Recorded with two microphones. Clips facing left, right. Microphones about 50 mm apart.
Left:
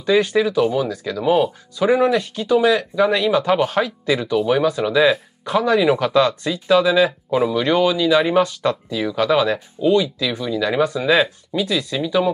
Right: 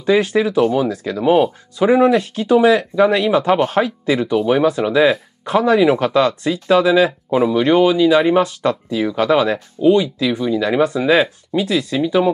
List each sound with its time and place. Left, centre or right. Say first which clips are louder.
0.1 s speech: right 2 dB; centre
0.4 s speech: right 2 dB; right
2.5 s speech: right 3 dB; right; by 8.2 s centre
8.2 s speech: right 2 dB; centre
8.5 s speech: right 2 dB; centre
10.2 s speech: right 4 dB; centre; by 12.3 s right